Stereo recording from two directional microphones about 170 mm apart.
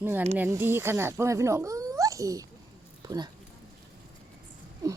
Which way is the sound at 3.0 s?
25° right (ahead or behind).